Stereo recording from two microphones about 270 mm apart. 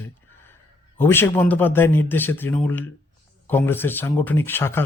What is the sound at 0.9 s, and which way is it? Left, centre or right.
A man's voice, centre.